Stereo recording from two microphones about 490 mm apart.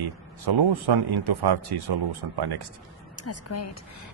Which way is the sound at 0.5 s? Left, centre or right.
Right.